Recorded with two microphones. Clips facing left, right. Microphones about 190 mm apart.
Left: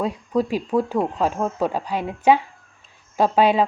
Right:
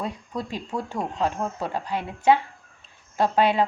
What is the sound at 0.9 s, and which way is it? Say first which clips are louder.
Speech: left 5 dB; 90° left.